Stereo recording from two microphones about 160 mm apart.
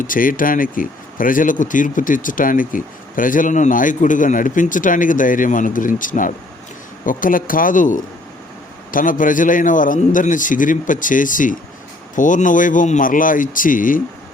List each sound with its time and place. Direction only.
0.0 s speech: 60° left (ahead or behind)